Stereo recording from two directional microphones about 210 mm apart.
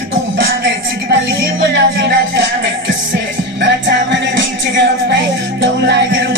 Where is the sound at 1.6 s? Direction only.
55° right (ahead or behind).